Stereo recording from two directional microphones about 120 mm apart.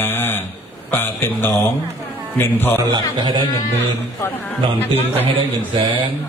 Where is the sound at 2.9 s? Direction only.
40° right (ahead or behind).